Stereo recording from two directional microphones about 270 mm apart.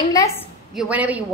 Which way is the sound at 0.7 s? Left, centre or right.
Centre.